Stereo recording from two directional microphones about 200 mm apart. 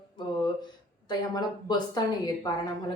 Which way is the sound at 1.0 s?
20° left (ahead or behind).